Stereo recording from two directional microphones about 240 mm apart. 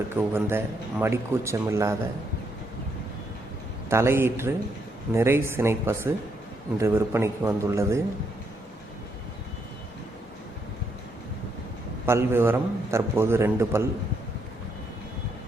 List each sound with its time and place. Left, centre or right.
0.2 s a man's voice: centre
3.8 s a man's voice: centre
12.0 s a man's voice: centre